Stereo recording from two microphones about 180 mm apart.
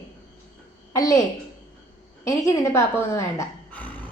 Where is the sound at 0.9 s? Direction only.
20° left (ahead or behind).